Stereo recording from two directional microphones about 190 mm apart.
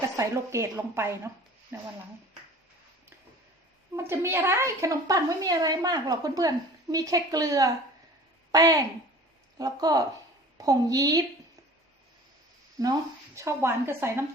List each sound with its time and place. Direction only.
0.2 s a woman's voice: 15° right (ahead or behind)
3.9 s a woman's voice: 15° right (ahead or behind)
12.8 s a woman's voice: 15° right (ahead or behind)